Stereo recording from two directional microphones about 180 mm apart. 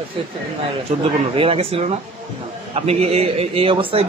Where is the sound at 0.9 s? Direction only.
35° right (ahead or behind).